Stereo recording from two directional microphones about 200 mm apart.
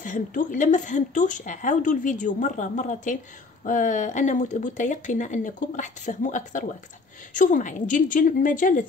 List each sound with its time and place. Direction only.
0.0 s a woman's voice: 40° left (ahead or behind)